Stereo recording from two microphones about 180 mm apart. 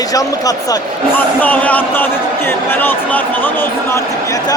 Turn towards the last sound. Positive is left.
turn(degrees=15)  # may be behind; listen again after turning